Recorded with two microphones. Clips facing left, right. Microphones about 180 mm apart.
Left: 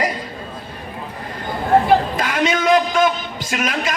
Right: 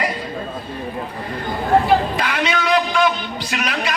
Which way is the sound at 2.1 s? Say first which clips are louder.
Left 2 dB; 45° left (ahead or behind).